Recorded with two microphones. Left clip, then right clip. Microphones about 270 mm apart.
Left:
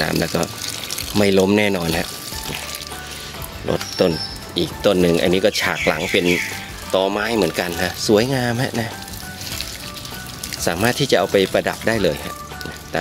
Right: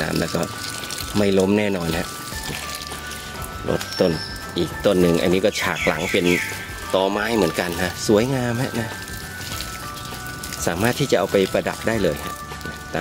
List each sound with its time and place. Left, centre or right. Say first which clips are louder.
0.2 s speech: left 2 dB; centre
3.6 s speech: left 2 dB; centre
10.6 s speech: left 3 dB; centre